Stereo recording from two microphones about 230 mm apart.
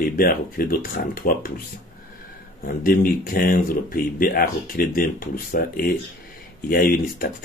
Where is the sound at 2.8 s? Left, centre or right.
Left.